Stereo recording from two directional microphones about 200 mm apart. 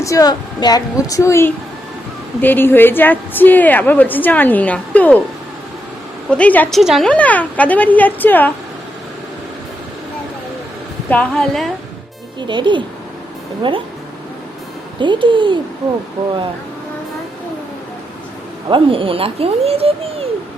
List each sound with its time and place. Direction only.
0.0 s a woman's voice: 15° left (ahead or behind)
6.3 s a woman's voice: 5° left (ahead or behind)
11.1 s a woman's voice: 5° left (ahead or behind)
12.4 s speech: 25° right (ahead or behind)
14.9 s speech: 25° right (ahead or behind)
18.7 s speech: 25° right (ahead or behind)